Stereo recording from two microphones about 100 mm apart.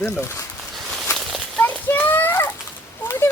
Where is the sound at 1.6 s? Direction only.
15° left (ahead or behind).